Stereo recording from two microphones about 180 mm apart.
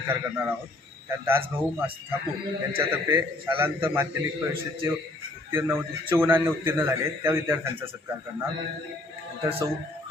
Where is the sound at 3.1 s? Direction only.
10° right (ahead or behind).